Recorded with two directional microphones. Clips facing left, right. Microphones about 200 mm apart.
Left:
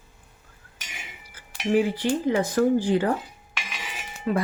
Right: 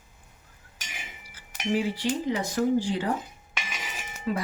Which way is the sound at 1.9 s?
55° left (ahead or behind).